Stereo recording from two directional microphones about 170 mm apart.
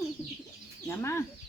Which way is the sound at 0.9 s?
15° left (ahead or behind).